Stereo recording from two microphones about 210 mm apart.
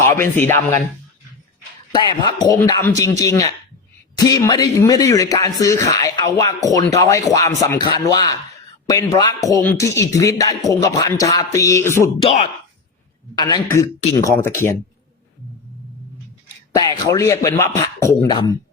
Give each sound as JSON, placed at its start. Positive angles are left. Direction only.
{"t": 0.2, "sound": "speech", "side_deg": 10}
{"t": 1.9, "sound": "speech", "side_deg": 20}
{"t": 12.2, "sound": "speech", "side_deg": 30}
{"t": 13.3, "sound": "speech", "side_deg": 20}
{"t": 16.7, "sound": "speech", "side_deg": 15}